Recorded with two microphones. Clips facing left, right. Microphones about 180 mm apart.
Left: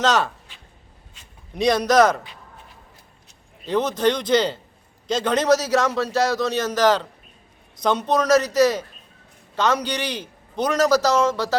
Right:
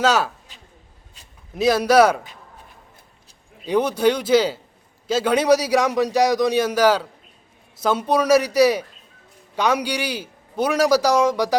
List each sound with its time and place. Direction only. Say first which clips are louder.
0.0 s a man's voice: right 1 dB; 10° right (ahead or behind)
0.5 s a sound: right 1 dB; 40° right (ahead or behind)
1.5 s a man's voice: right 2 dB; 5° right (ahead or behind)
3.7 s a man's voice: right 2 dB; 10° right (ahead or behind)